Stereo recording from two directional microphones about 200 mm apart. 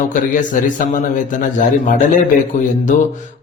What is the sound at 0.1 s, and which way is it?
Speech, 40° left (ahead or behind).